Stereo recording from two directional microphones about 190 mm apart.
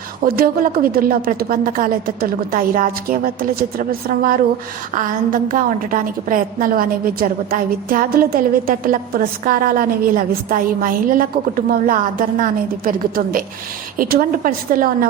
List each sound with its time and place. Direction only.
0.3 s a woman's voice: 50° right (ahead or behind)